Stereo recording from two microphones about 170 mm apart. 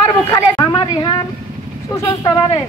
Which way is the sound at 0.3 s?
25° left (ahead or behind).